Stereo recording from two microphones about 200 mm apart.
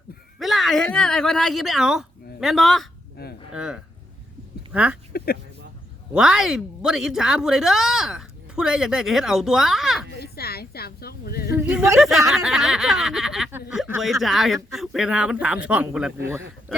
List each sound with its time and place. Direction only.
0.3 s a woman's voice: centre (ahead or behind)
3.2 s a sound: 50° left (ahead or behind)
3.5 s speech: 5° right (ahead or behind)
5.1 s speech: 50° left (ahead or behind)
6.1 s speech: 5° right (ahead or behind)
10.2 s speech: 50° left (ahead or behind)
11.5 s a man's voice: 5° right (ahead or behind)
16.7 s speech: centre (ahead or behind)